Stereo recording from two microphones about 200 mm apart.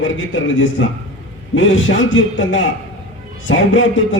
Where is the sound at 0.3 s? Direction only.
70° left (ahead or behind).